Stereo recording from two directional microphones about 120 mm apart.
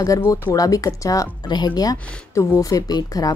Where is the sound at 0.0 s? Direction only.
30° left (ahead or behind).